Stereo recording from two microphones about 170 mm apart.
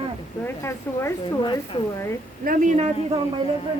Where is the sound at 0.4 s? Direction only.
15° left (ahead or behind).